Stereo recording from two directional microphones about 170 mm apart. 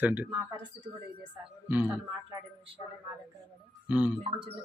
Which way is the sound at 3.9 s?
10° right (ahead or behind).